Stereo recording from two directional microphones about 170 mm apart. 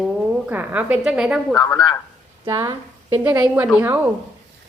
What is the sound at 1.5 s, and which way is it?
Speech, 25° left (ahead or behind).